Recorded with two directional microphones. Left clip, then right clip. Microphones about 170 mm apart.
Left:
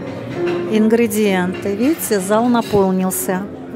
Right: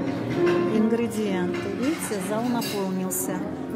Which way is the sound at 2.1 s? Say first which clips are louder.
Left 12 dB; 65° left (ahead or behind).